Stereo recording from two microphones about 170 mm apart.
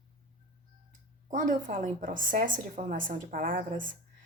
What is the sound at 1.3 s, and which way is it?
Speech, 50° right (ahead or behind).